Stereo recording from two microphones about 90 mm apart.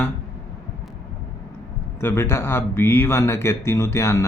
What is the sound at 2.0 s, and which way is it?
Speech, 30° left (ahead or behind).